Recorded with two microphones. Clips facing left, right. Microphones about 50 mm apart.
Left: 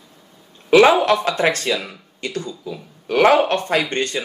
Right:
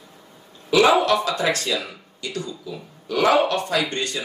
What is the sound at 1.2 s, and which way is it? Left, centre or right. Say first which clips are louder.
Speech: left 4 dB; left.